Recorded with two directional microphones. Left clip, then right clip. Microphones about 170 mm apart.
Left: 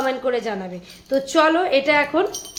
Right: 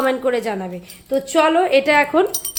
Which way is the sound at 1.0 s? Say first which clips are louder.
Right 1 dB; 5° right (ahead or behind).